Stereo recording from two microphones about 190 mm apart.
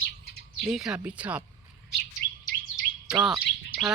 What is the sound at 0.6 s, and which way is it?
Speech, centre (ahead or behind).